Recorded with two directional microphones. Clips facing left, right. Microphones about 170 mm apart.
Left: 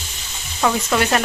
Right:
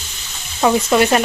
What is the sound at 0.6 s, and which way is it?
Frying, 15° right (ahead or behind).